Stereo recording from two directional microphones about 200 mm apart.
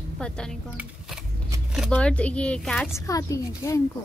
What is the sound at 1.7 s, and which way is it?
A woman's voice, centre (ahead or behind).